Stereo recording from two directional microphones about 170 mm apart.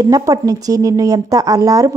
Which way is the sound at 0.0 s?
20° right (ahead or behind).